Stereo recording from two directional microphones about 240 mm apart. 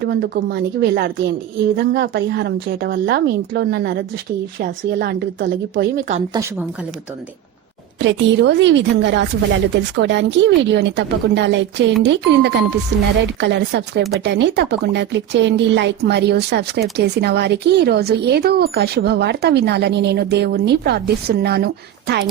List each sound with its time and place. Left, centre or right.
0.0 s a woman's voice: right
7.9 s speech: right